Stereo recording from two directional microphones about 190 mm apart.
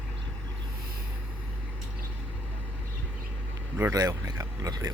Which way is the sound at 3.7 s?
15° right (ahead or behind).